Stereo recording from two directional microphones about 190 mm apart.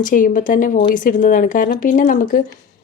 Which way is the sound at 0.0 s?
45° left (ahead or behind).